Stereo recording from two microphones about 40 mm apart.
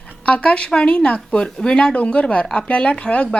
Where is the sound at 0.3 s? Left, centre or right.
Left.